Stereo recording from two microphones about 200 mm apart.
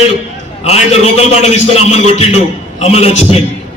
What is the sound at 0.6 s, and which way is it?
A man's voice, 35° left (ahead or behind).